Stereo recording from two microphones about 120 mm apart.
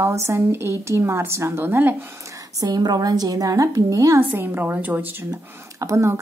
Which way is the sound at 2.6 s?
35° right (ahead or behind).